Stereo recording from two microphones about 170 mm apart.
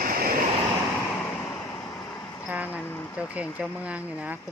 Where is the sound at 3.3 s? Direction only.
10° right (ahead or behind).